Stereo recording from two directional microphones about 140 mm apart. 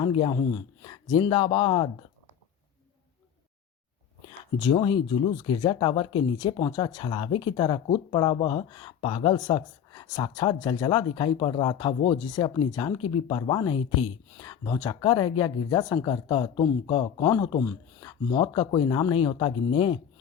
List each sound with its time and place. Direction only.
0.0 s speech: 35° left (ahead or behind)
4.3 s speech: 35° left (ahead or behind)